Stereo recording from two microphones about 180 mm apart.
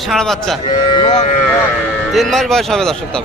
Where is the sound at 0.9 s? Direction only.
30° left (ahead or behind).